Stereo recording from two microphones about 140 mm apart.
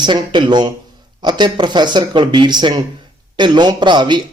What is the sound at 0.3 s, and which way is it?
Speech, 35° right (ahead or behind).